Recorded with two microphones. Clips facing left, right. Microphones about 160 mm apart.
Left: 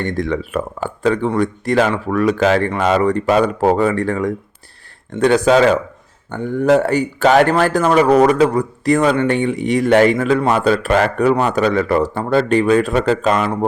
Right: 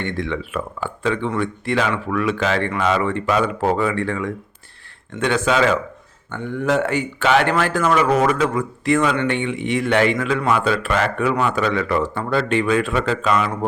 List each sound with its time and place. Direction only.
0.0 s speech: 40° left (ahead or behind)